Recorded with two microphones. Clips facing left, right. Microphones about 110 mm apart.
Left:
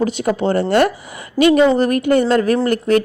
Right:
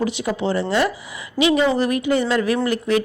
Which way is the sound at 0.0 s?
45° left (ahead or behind).